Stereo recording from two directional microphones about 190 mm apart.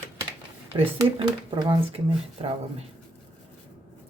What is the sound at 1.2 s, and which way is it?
Speech, 25° right (ahead or behind).